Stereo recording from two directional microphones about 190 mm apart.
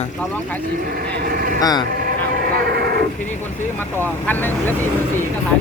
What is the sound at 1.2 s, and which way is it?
Speech, 50° right (ahead or behind).